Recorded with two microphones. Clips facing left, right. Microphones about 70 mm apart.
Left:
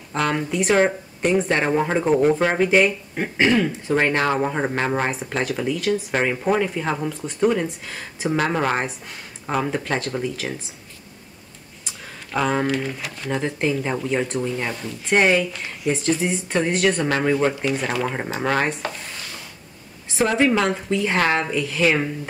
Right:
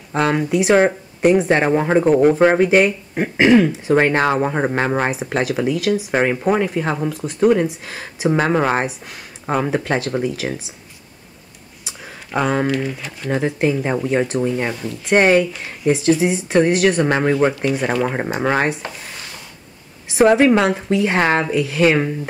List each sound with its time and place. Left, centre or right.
0.1 s speech: centre
6.1 s speech: centre
8.3 s speech: centre
11.8 s a sound: centre
12.7 s speech: centre
17.0 s speech: centre
20.2 s speech: centre